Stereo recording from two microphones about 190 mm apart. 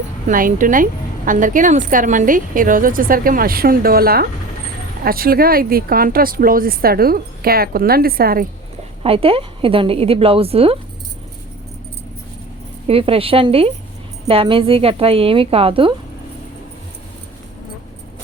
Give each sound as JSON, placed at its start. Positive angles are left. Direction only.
{"t": 0.3, "sound": "a woman's voice", "side_deg": -45}
{"t": 9.0, "sound": "a woman's voice", "side_deg": -30}
{"t": 12.9, "sound": "a woman's voice", "side_deg": -30}